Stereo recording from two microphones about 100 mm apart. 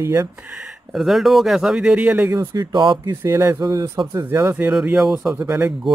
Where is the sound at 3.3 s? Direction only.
30° right (ahead or behind).